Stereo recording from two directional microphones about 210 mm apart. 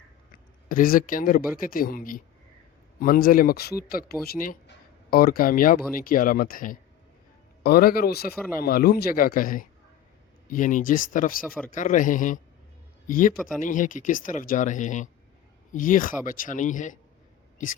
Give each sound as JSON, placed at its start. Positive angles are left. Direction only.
{"t": 0.7, "sound": "speech", "side_deg": 40}
{"t": 11.3, "sound": "speech", "side_deg": 0}
{"t": 11.7, "sound": "speech", "side_deg": 40}